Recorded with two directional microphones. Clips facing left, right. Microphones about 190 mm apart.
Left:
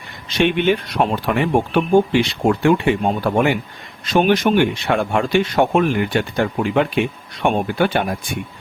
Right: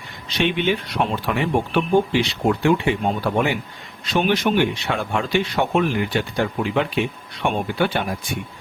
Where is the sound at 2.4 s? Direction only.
50° left (ahead or behind).